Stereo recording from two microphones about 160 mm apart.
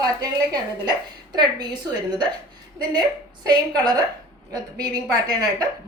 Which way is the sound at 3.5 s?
25° right (ahead or behind).